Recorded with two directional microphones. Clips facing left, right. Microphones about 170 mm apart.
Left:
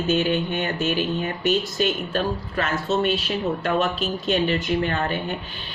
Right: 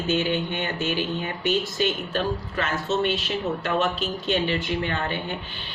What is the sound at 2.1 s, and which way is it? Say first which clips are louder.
Speech: left 2 dB; 40° left (ahead or behind).